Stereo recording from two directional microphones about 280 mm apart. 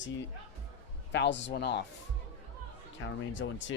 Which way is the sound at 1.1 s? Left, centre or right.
Left.